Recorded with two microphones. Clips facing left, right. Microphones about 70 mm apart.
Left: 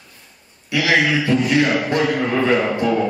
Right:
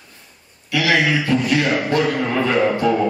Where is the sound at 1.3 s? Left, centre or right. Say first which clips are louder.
Left 1 dB; left.